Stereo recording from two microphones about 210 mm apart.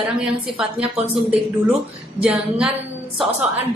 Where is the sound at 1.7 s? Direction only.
5° right (ahead or behind).